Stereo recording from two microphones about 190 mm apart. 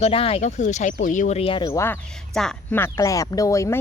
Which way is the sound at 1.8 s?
10° left (ahead or behind).